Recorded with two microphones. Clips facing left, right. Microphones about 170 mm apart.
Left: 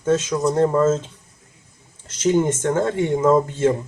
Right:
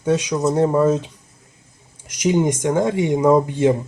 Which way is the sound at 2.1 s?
15° right (ahead or behind).